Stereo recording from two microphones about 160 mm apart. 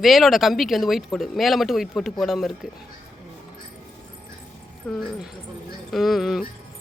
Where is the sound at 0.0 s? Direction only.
Centre (ahead or behind).